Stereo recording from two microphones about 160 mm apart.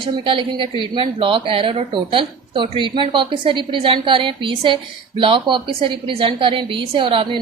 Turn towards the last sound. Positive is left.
turn(degrees=-35)  # may be behind; listen again after turning